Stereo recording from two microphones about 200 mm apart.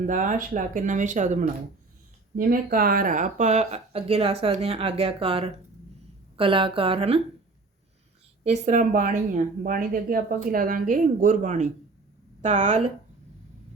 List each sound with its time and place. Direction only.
0.0 s speech: 40° right (ahead or behind)
2.5 s a woman's voice: 45° right (ahead or behind); by 7.2 s 30° right (ahead or behind)
8.4 s speech: 40° right (ahead or behind)